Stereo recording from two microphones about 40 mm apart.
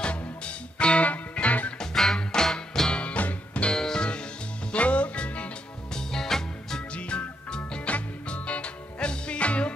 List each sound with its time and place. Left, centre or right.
0.7 s music: left
1.8 s music: centre
2.9 s music: left
3.7 s music: centre
4.7 s music: left
5.9 s music: centre
7.0 s music: left